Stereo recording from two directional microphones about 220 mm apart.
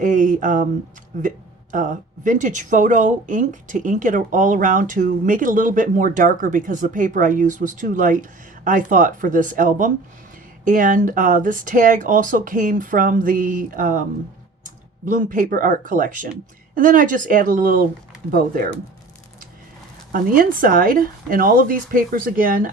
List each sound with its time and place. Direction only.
0.0 s a sound: 35° right (ahead or behind)
1.7 s speech: 35° right (ahead or behind)
20.1 s speech: 40° right (ahead or behind)